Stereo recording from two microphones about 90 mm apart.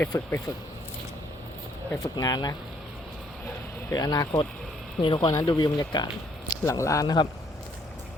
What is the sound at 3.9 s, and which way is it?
Speech, 45° left (ahead or behind).